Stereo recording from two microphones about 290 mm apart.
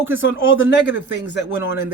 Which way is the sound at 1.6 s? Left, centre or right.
Centre.